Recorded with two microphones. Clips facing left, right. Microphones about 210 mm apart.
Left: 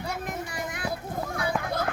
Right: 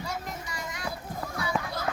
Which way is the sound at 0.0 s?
55° left (ahead or behind).